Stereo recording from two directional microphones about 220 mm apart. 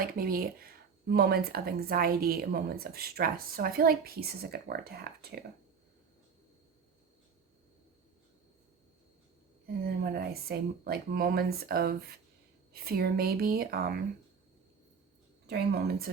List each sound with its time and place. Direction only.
0.0 s speech: 40° right (ahead or behind)
9.6 s speech: 45° right (ahead or behind)
15.4 s speech: 50° right (ahead or behind)